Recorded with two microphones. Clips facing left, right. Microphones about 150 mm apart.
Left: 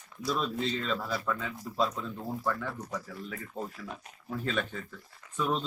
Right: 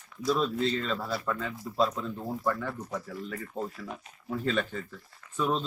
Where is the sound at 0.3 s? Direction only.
Centre (ahead or behind).